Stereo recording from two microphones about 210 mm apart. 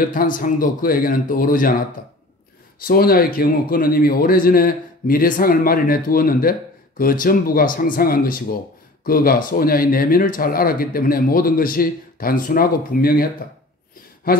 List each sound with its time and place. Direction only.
0.0 s a man's voice: 40° left (ahead or behind)
2.9 s speech: 45° left (ahead or behind)